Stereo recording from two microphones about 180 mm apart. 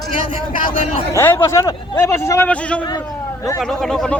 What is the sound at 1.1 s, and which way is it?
A man's voice, 15° left (ahead or behind).